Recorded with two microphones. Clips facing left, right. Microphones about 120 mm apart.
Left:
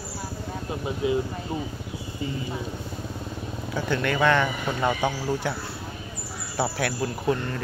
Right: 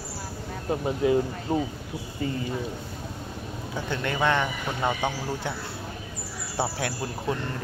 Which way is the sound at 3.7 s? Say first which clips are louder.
Left 4 dB; 25° right (ahead or behind).